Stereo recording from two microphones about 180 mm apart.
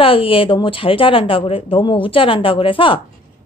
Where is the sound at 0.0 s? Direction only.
30° left (ahead or behind).